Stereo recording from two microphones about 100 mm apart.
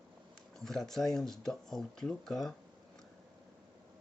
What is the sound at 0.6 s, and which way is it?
Speech, 5° left (ahead or behind).